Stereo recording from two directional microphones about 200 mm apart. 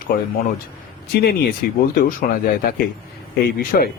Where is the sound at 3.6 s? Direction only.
45° left (ahead or behind).